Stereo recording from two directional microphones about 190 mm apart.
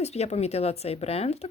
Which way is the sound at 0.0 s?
35° left (ahead or behind).